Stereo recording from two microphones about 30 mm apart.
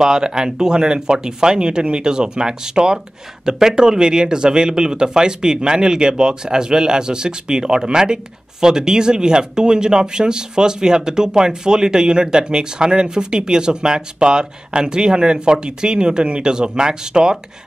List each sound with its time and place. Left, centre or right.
0.0 s speech: right